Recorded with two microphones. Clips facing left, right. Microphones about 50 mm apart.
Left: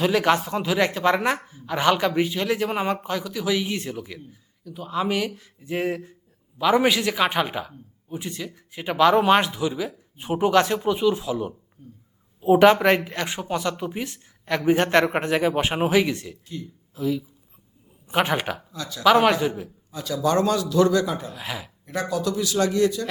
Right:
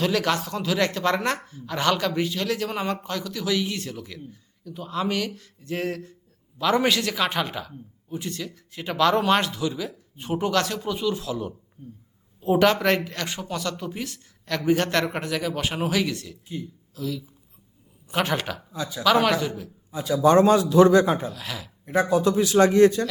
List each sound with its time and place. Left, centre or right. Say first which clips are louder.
0.0 s speech: left 3 dB; centre
18.7 s a man's voice: right 3 dB; centre
19.2 s speech: left 3 dB; centre
19.9 s a man's voice: right 4 dB; centre
21.3 s speech: left 2 dB; centre
22.1 s a man's voice: right 4 dB; right